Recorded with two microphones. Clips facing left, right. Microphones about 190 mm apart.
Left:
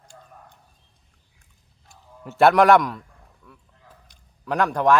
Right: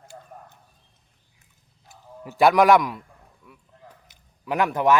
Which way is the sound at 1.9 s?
Centre (ahead or behind).